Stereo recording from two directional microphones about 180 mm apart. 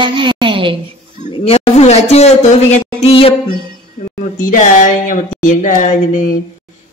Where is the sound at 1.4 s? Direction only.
35° left (ahead or behind).